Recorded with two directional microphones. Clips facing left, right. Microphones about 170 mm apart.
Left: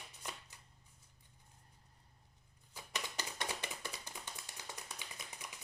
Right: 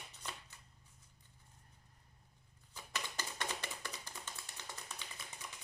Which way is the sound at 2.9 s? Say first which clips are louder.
Even; 15° left (ahead or behind).